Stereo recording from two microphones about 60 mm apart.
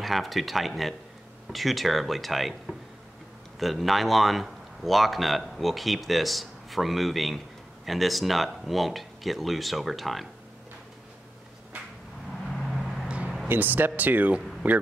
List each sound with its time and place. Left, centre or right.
0.0 s speech: centre
3.5 s speech: centre
12.5 s vehicle: centre
13.5 s speech: right